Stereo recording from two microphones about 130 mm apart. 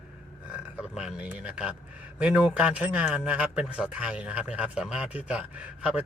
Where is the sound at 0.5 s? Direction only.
5° right (ahead or behind).